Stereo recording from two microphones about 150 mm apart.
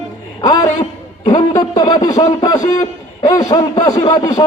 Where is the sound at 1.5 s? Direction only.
25° left (ahead or behind).